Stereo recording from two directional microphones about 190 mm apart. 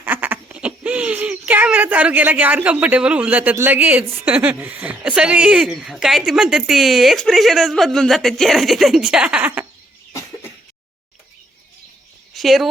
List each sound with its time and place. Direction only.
0.0 s speech: 10° right (ahead or behind)
10.1 s a sound: 15° left (ahead or behind)
12.3 s a woman's voice: centre (ahead or behind)